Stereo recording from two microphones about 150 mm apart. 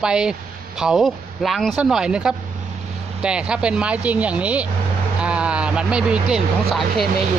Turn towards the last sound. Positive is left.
turn(degrees=0)  # may be behind; listen again after turning